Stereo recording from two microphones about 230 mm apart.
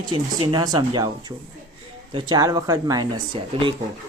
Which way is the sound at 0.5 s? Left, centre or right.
Centre.